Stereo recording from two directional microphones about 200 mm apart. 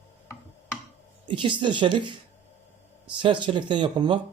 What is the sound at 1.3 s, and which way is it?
Speech, 25° right (ahead or behind).